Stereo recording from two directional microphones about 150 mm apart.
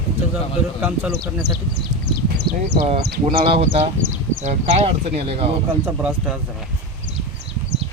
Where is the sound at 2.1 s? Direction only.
90° right.